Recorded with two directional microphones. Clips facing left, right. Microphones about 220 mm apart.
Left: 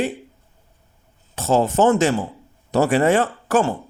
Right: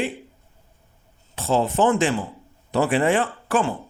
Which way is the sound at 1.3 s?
45° left (ahead or behind).